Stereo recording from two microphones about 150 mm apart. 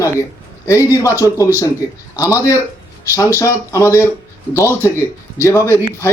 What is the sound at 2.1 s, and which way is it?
Speech, 20° left (ahead or behind).